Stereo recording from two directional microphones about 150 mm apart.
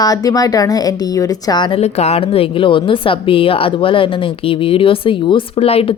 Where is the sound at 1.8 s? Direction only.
45° left (ahead or behind).